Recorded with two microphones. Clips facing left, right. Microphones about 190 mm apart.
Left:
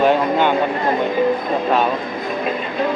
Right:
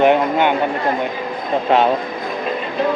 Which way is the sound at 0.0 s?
15° right (ahead or behind).